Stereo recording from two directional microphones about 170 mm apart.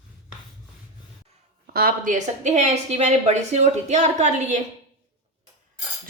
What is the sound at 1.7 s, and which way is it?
A woman's voice, 60° right (ahead or behind).